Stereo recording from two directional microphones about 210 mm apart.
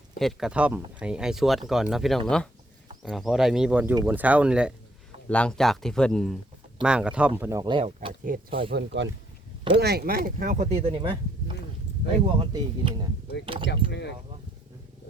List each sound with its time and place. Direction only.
0.2 s speech: centre (ahead or behind)
7.6 s speech: 25° right (ahead or behind)
8.2 s speech: 40° right (ahead or behind)
8.7 s speech: 60° right (ahead or behind)
9.8 s speech: 45° right (ahead or behind); by 13.7 s 25° right (ahead or behind)